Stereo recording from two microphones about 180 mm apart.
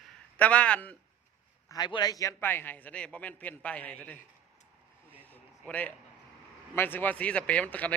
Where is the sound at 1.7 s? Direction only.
25° left (ahead or behind); by 4.1 s 10° left (ahead or behind).